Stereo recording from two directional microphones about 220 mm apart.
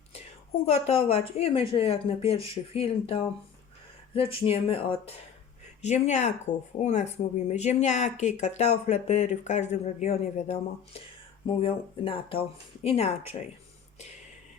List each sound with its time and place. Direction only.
0.6 s speech: 30° left (ahead or behind)